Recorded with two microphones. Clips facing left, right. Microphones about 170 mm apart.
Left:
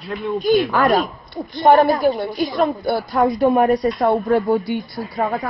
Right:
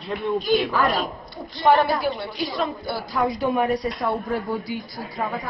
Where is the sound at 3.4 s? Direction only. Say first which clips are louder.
Left 8 dB; 45° left (ahead or behind).